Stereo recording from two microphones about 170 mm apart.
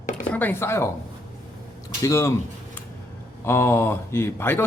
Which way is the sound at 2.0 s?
20° left (ahead or behind).